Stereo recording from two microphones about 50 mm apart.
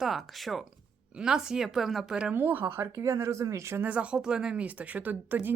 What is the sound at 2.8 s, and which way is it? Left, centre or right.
Speech, right.